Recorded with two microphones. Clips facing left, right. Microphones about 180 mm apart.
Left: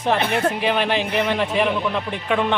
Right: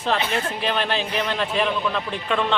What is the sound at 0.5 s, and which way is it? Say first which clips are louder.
A man's voice: left 3 dB; 15° left (ahead or behind).